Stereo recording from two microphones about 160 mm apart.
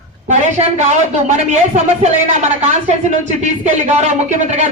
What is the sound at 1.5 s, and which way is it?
Speech, 45° right (ahead or behind).